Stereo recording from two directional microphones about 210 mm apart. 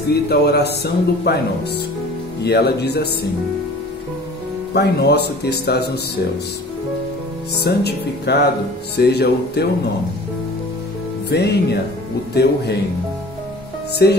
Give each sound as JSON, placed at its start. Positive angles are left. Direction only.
{"t": 0.1, "sound": "a man's voice", "side_deg": 50}
{"t": 2.4, "sound": "a man's voice", "side_deg": 50}
{"t": 4.7, "sound": "a man's voice", "side_deg": 50}
{"t": 7.6, "sound": "a man's voice", "side_deg": 50}
{"t": 11.2, "sound": "a man's voice", "side_deg": 50}
{"t": 14.0, "sound": "a man's voice", "side_deg": 50}